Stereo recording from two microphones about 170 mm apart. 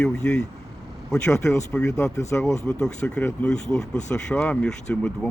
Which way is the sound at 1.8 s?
15° left (ahead or behind).